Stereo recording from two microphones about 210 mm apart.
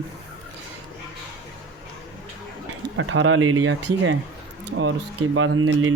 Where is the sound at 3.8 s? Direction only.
60° right (ahead or behind).